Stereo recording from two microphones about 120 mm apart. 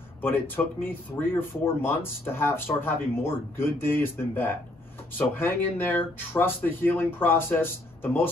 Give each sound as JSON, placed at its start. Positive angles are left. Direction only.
{"t": 0.2, "sound": "speech", "side_deg": 20}